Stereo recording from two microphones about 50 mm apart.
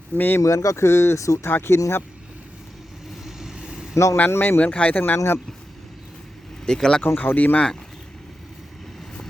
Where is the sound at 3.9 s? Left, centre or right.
Left.